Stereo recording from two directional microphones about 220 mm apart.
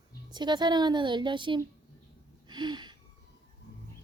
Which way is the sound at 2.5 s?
20° right (ahead or behind).